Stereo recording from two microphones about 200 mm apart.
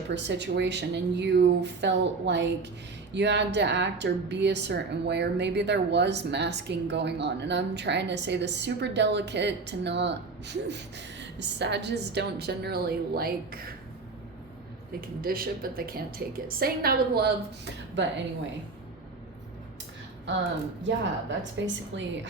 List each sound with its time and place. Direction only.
0.1 s a woman's voice: 60° right (ahead or behind)
15.2 s a woman's voice: 45° right (ahead or behind)
20.8 s a woman's voice: 65° right (ahead or behind)